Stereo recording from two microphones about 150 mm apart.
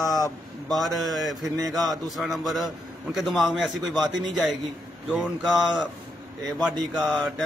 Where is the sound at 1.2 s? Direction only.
25° right (ahead or behind).